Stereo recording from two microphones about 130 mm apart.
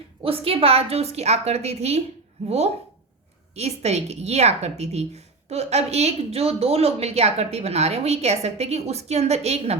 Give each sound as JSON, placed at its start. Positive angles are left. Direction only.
{"t": 0.2, "sound": "a woman's voice", "side_deg": -45}
{"t": 3.5, "sound": "a woman's voice", "side_deg": -55}